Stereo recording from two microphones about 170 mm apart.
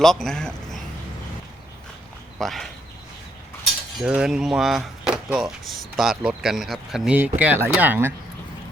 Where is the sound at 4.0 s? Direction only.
5° right (ahead or behind).